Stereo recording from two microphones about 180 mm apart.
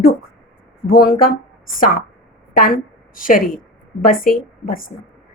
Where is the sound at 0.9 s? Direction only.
55° left (ahead or behind).